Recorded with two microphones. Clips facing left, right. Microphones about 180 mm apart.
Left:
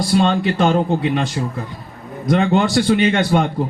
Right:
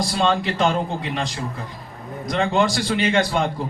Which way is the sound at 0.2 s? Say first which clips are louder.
Left 2 dB; 50° left (ahead or behind).